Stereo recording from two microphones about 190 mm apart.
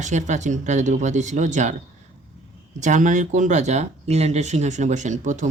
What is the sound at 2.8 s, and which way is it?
Speech, 40° right (ahead or behind).